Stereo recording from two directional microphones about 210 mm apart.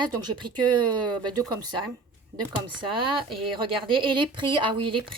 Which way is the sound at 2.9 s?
25° right (ahead or behind).